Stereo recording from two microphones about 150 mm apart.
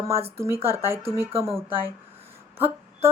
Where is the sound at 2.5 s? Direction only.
15° right (ahead or behind).